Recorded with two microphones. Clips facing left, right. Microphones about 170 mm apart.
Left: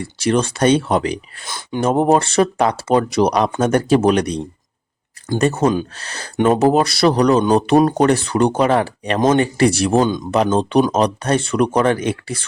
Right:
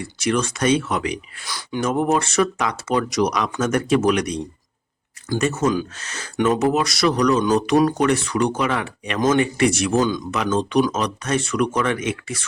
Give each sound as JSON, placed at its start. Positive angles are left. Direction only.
{"t": 0.0, "sound": "speech", "side_deg": 30}